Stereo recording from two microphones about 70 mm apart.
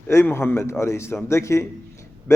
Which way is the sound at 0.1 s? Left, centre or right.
Left.